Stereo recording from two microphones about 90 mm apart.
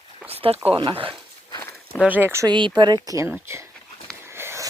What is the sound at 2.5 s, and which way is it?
Speech, 60° right (ahead or behind).